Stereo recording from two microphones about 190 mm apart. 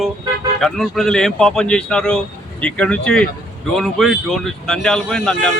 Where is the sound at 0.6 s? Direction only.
Centre (ahead or behind).